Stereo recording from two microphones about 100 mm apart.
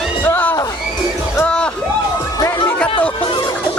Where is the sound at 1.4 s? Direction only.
10° left (ahead or behind).